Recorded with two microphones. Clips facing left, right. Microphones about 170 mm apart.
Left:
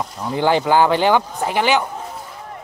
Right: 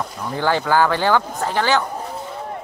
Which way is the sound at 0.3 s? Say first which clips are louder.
Left 3 dB; 15° left (ahead or behind).